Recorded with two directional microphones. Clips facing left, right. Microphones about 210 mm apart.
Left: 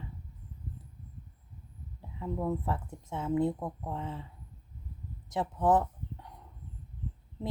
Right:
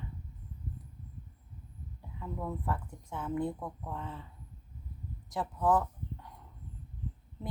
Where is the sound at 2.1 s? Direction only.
20° left (ahead or behind).